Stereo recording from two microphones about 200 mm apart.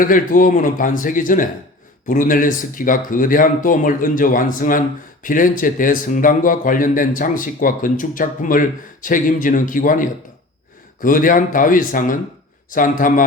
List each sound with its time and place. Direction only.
0.0 s a man's voice: 40° left (ahead or behind)